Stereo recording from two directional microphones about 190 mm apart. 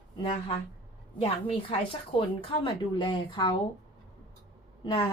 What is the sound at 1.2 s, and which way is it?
A woman's voice, 30° left (ahead or behind).